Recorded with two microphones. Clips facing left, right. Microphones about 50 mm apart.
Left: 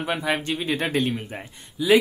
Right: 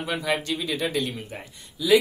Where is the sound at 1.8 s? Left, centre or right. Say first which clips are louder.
Left 1 dB; left.